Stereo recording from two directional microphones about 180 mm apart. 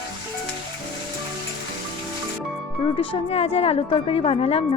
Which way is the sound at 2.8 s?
30° left (ahead or behind).